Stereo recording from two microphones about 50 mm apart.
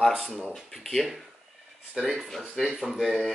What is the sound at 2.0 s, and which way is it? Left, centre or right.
A man's voice, centre.